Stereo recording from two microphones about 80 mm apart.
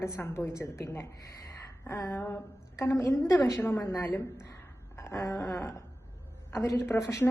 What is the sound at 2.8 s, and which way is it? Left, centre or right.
Speech, left.